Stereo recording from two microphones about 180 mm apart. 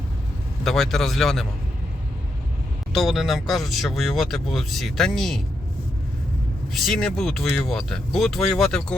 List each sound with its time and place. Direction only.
0.6 s speech: centre (ahead or behind)
2.9 s speech: centre (ahead or behind)
6.7 s speech: centre (ahead or behind)